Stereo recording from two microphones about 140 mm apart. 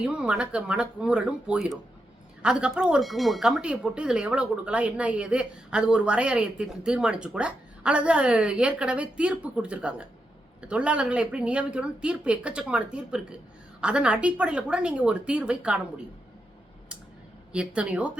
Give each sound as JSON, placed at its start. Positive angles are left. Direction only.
{"t": 0.0, "sound": "speech", "side_deg": -5}
{"t": 17.5, "sound": "speech", "side_deg": -10}